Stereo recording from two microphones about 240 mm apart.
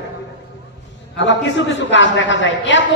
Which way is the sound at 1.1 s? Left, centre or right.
Left.